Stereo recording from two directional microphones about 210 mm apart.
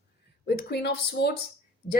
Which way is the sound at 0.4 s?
50° left (ahead or behind).